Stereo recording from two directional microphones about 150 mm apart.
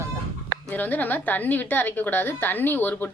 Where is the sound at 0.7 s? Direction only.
10° left (ahead or behind).